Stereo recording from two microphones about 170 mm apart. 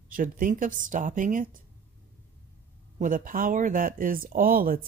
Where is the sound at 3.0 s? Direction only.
50° right (ahead or behind).